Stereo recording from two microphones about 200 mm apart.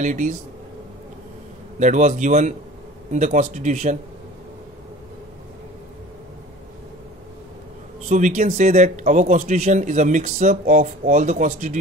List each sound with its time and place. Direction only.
0.0 s speech: 40° right (ahead or behind)
1.8 s speech: 35° right (ahead or behind)
8.1 s speech: 40° right (ahead or behind)